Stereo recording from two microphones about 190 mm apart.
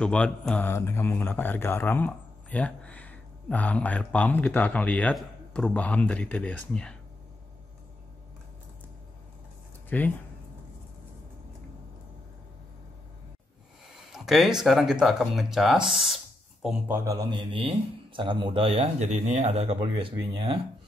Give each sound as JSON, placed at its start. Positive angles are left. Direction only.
{"t": 0.0, "sound": "speech", "side_deg": 5}
{"t": 9.8, "sound": "speech", "side_deg": 10}
{"t": 14.1, "sound": "a man's voice", "side_deg": 0}